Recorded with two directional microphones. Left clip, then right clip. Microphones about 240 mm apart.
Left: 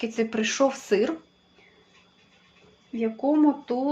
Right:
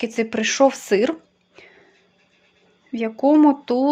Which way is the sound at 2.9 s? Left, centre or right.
Right.